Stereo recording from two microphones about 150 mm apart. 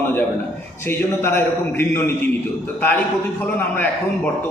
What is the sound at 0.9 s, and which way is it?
A man's voice, 15° left (ahead or behind).